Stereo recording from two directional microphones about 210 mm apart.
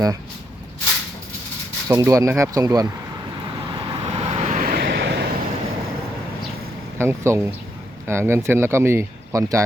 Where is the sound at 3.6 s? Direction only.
30° right (ahead or behind).